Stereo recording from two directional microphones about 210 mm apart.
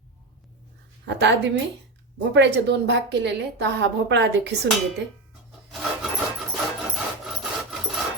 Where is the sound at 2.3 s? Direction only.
55° right (ahead or behind).